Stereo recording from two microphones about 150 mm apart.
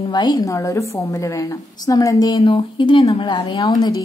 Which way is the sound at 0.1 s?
30° left (ahead or behind).